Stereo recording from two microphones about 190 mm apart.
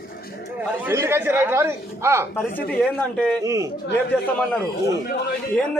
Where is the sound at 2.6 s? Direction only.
5° left (ahead or behind).